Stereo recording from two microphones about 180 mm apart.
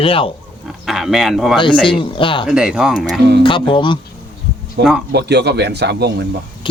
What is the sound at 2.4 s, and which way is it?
Speech, 5° right (ahead or behind).